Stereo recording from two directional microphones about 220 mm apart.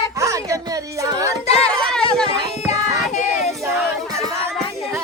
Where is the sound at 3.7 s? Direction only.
Centre (ahead or behind).